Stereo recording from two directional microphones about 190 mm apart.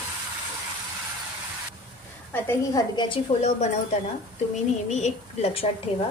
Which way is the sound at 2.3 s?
10° left (ahead or behind).